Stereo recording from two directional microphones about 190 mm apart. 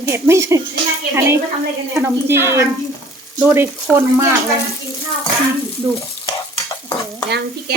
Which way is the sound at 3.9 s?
15° right (ahead or behind).